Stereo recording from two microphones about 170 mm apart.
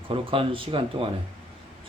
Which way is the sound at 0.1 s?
30° right (ahead or behind).